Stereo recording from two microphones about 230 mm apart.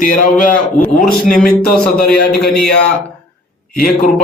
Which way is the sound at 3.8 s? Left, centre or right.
Left.